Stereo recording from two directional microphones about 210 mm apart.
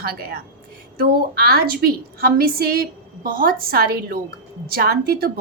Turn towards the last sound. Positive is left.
turn(degrees=-45)  # may be behind; listen again after turning